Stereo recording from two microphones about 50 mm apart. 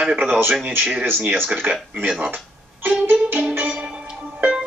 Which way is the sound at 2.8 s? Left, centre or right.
Right.